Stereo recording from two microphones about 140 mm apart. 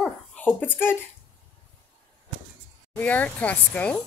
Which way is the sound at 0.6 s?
15° left (ahead or behind).